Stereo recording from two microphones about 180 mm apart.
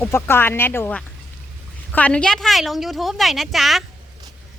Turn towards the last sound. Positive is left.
turn(degrees=0)  # may be behind; listen again after turning